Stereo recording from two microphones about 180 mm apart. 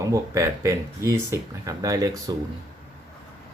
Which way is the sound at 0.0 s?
15° right (ahead or behind).